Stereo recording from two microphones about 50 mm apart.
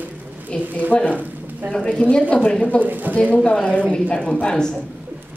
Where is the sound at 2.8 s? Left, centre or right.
Right.